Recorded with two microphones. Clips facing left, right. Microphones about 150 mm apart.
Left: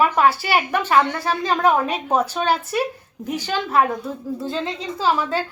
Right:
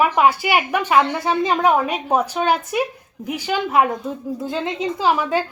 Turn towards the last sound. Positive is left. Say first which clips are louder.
# right 2 dB
turn(degrees=-15)  # may be behind; listen again after turning